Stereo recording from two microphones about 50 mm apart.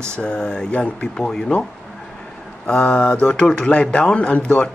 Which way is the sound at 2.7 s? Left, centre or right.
Left.